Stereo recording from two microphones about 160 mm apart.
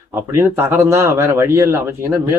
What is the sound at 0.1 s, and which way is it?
Speech, 15° right (ahead or behind).